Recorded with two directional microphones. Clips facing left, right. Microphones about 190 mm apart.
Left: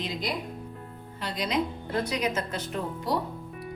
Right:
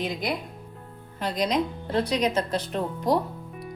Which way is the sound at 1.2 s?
45° right (ahead or behind).